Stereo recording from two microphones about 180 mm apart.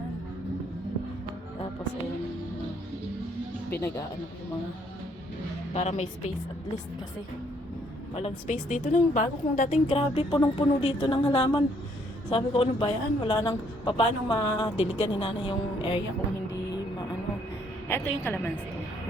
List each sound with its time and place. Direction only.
5.7 s a woman's voice: 40° left (ahead or behind)
8.1 s a woman's voice: 25° left (ahead or behind)
8.4 s a woman's voice: 45° left (ahead or behind)
17.8 s a woman's voice: 15° left (ahead or behind)